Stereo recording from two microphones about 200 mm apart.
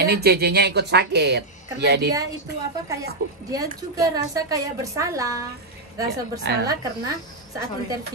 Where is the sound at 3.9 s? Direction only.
15° right (ahead or behind).